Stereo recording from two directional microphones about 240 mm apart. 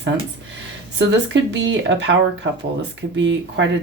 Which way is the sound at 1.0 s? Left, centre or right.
Right.